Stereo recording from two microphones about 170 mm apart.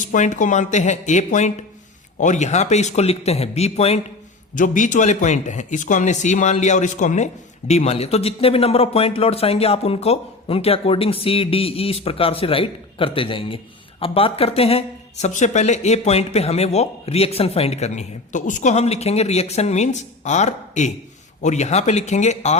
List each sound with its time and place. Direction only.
0.0 s speech: 50° left (ahead or behind)
4.5 s speech: 50° left (ahead or behind)